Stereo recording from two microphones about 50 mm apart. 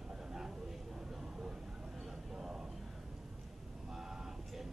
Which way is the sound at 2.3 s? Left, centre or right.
Centre.